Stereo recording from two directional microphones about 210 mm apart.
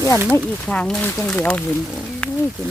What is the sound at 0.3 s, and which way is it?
Speech, 5° left (ahead or behind).